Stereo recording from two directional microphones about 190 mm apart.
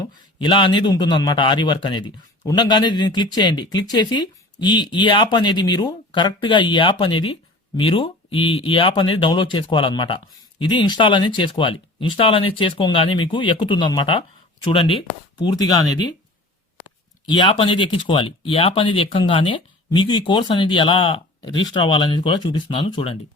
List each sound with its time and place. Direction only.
0.0 s speech: 25° left (ahead or behind)
17.2 s speech: 25° left (ahead or behind)